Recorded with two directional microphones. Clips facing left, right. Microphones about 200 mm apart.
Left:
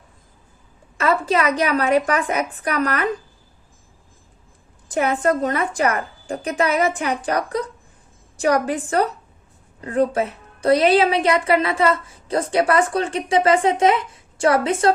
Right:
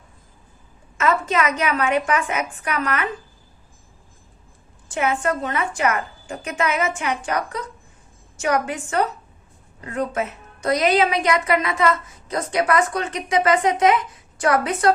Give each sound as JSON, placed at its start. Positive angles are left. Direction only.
{"t": 0.9, "sound": "a woman's voice", "side_deg": 35}
{"t": 4.9, "sound": "a woman's voice", "side_deg": 35}